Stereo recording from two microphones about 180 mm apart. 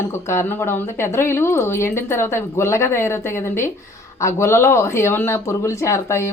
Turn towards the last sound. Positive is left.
turn(degrees=15)  # may be behind; listen again after turning